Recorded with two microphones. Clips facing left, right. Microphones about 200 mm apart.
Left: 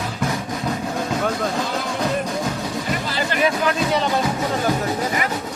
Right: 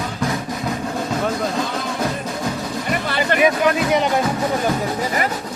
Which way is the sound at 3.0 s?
60° right (ahead or behind).